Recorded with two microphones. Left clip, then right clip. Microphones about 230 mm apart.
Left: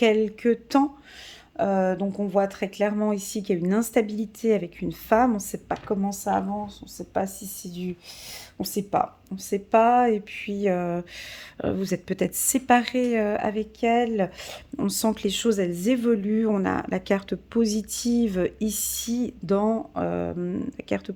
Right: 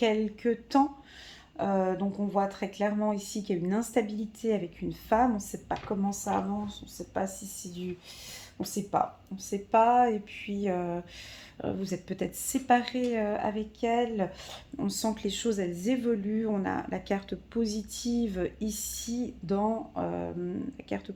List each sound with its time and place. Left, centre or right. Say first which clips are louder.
0.0 s speech: left 7 dB; left